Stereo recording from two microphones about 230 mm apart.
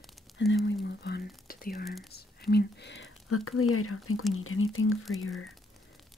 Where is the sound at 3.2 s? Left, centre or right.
Left.